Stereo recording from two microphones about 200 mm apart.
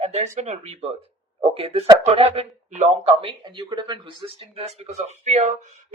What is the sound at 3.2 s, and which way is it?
Speech, 25° right (ahead or behind).